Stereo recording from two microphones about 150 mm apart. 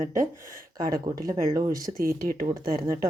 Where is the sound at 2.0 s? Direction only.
75° right (ahead or behind).